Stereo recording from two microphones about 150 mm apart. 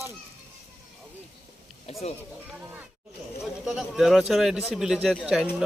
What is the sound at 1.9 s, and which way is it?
Speech, 45° left (ahead or behind).